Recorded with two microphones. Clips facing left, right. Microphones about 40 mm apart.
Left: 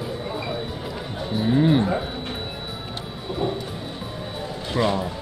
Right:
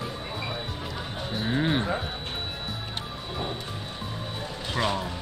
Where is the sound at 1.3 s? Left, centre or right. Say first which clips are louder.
Left 7 dB; centre.